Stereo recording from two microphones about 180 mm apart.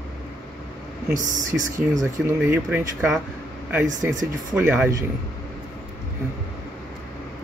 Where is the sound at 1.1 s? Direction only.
45° right (ahead or behind).